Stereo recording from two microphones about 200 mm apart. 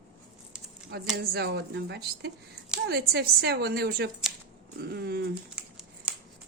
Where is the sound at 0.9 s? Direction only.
50° right (ahead or behind).